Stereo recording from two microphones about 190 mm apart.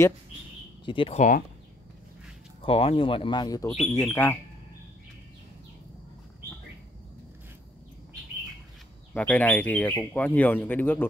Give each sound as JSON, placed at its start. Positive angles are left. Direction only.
{"t": 0.8, "sound": "speech", "side_deg": 25}
{"t": 2.6, "sound": "speech", "side_deg": 30}
{"t": 9.1, "sound": "speech", "side_deg": 10}